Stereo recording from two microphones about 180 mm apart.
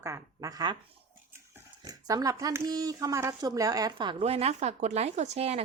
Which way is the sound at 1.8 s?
20° right (ahead or behind).